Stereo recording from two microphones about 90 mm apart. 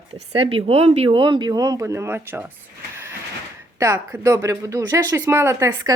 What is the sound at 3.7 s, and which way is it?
Speech, 35° right (ahead or behind).